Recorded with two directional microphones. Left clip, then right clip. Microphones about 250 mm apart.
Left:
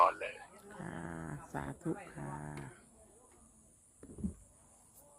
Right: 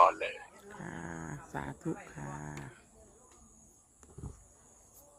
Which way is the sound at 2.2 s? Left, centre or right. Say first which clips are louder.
Right 2 dB; centre.